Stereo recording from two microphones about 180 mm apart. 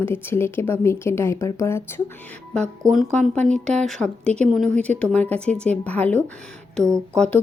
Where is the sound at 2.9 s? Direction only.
Centre (ahead or behind).